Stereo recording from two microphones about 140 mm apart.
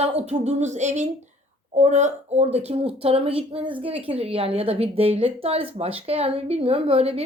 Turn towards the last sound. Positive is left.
turn(degrees=-45)  # may be behind; listen again after turning